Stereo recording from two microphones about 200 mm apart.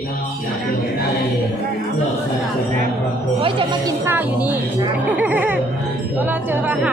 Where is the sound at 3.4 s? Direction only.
20° right (ahead or behind).